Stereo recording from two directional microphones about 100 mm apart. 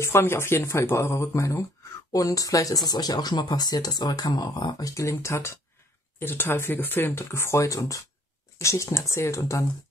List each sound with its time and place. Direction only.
0.0 s speech: 25° left (ahead or behind)